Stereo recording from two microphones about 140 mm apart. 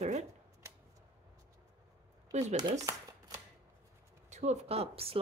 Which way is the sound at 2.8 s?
25° right (ahead or behind).